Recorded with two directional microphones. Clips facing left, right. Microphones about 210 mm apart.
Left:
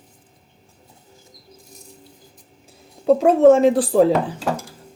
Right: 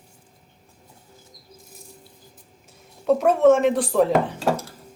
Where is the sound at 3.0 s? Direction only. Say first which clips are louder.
Left 4 dB; 30° left (ahead or behind).